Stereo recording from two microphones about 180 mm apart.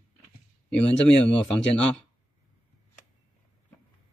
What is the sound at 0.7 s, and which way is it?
Speech, 5° left (ahead or behind).